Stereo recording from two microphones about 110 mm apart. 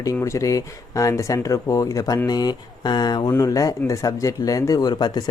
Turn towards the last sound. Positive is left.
turn(degrees=40)  # may be behind; listen again after turning